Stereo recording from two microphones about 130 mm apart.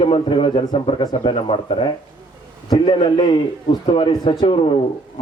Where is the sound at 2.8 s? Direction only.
40° left (ahead or behind).